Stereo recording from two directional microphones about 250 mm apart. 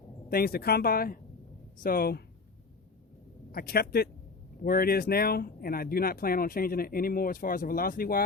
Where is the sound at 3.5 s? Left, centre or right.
Left.